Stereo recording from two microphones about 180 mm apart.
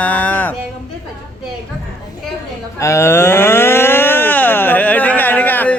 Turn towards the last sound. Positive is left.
turn(degrees=10)  # may be behind; listen again after turning